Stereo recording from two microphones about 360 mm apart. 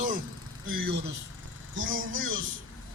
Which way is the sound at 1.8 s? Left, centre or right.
Right.